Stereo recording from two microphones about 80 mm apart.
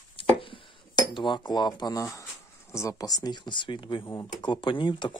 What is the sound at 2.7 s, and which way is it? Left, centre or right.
Speech, left.